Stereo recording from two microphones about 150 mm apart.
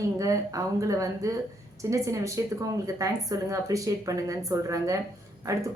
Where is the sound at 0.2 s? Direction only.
20° right (ahead or behind).